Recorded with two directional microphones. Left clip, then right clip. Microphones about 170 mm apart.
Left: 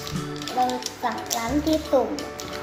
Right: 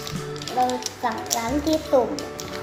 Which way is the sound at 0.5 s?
5° right (ahead or behind).